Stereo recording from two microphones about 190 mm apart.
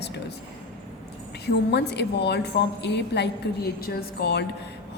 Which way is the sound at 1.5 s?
60° left (ahead or behind).